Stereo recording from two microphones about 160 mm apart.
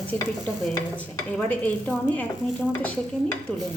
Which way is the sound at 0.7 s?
15° left (ahead or behind).